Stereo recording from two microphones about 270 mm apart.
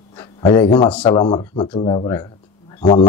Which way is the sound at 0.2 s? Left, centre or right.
Centre.